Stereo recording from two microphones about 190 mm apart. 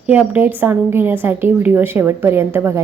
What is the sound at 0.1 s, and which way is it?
A woman's voice, 10° right (ahead or behind).